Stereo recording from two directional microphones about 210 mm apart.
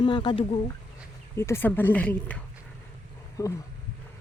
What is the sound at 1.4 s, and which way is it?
Speech, 10° left (ahead or behind).